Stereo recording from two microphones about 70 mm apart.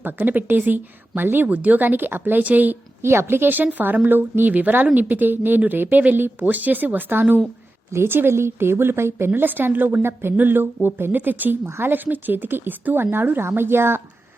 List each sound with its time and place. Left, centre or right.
0.0 s speech: right
3.0 s speech: right